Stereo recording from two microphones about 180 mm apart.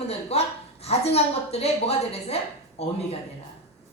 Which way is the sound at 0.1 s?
35° left (ahead or behind).